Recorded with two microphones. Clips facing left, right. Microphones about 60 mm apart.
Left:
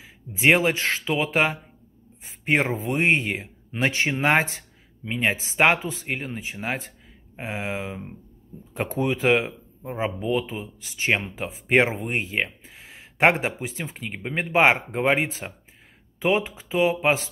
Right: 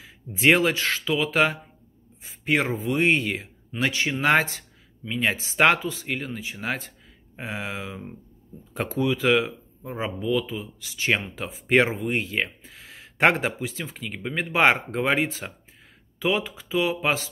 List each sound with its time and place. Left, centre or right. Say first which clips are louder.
0.4 s speech: even; centre
0.7 s a man's voice: even; left
3.7 s speech: left 2 dB; left
4.2 s speech: right 1 dB; left
6.5 s speech: left 1 dB; centre
11.9 s speech: right 1 dB; left
12.6 s speech: even; centre